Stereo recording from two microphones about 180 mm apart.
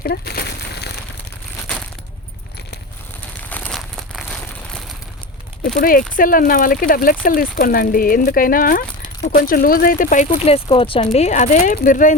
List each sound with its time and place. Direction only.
0.0 s a sound: 60° left (ahead or behind)
3.5 s crumpling: 5° left (ahead or behind)
5.6 s speech: 55° left (ahead or behind)